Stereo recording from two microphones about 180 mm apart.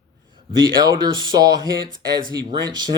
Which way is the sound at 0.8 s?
25° right (ahead or behind).